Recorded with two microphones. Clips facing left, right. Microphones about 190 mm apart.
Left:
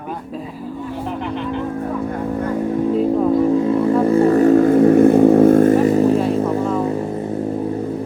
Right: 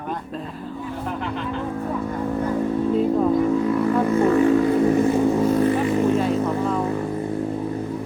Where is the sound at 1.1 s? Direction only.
20° left (ahead or behind).